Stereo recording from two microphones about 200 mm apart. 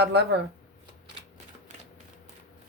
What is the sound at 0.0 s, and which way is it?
Speech, 55° right (ahead or behind).